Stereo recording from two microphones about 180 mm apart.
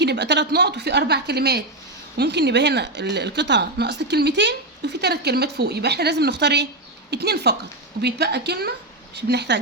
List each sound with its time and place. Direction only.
0.0 s a woman's voice: 70° right (ahead or behind)